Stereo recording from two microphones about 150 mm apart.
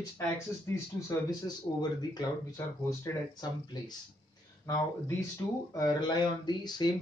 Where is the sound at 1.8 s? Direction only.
30° left (ahead or behind).